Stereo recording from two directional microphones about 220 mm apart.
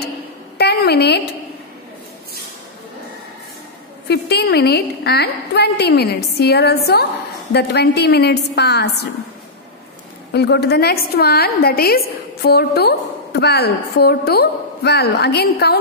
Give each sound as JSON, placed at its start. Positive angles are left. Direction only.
{"t": 0.6, "sound": "a woman's voice", "side_deg": 50}
{"t": 4.1, "sound": "a woman's voice", "side_deg": 50}
{"t": 10.3, "sound": "a woman's voice", "side_deg": 50}